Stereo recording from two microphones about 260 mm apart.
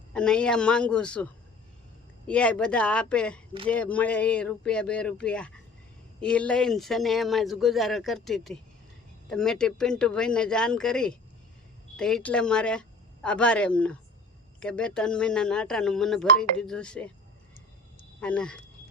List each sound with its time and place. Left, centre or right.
0.1 s speech: centre
18.2 s speech: centre